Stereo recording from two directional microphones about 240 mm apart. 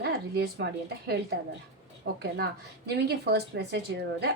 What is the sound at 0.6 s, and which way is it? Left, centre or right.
Speech, right.